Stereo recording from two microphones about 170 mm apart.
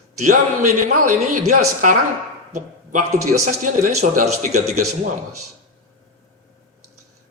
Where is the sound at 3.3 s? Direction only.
45° right (ahead or behind).